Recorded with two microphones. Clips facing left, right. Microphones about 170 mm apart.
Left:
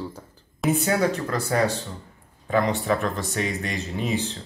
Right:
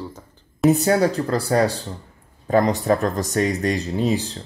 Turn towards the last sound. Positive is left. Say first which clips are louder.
# right 5 dB
turn(degrees=-35)  # may be behind; listen again after turning